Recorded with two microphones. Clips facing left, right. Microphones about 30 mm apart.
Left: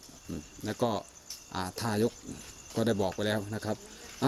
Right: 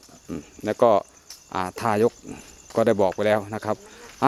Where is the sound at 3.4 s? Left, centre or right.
Right.